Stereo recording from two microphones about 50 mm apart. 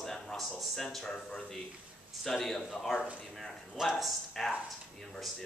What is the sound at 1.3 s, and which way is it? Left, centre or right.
Speech, centre.